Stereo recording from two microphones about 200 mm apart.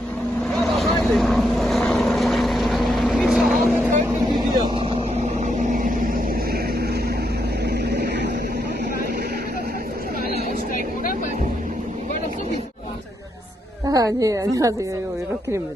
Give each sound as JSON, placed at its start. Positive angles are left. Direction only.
{"t": 0.7, "sound": "vehicle", "side_deg": 0}
{"t": 4.3, "sound": "vehicle", "side_deg": -25}
{"t": 7.6, "sound": "vehicle", "side_deg": -55}
{"t": 13.8, "sound": "a woman's voice", "side_deg": -15}